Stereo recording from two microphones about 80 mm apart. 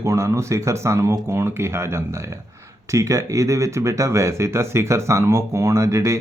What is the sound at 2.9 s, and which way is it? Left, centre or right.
Speech, right.